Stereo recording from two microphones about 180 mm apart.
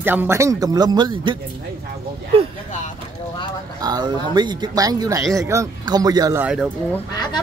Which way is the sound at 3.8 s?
20° right (ahead or behind).